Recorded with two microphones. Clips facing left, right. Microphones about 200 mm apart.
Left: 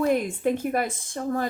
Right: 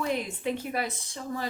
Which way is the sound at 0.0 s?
50° left (ahead or behind).